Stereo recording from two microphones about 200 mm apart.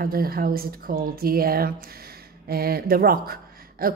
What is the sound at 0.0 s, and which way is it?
A woman's voice, 45° right (ahead or behind).